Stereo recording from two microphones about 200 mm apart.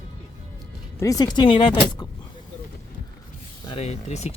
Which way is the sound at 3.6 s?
30° left (ahead or behind).